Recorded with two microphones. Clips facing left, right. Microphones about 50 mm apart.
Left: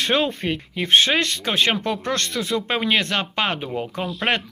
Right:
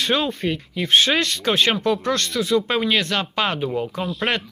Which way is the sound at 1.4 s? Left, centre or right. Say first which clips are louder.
Right 2 dB; centre.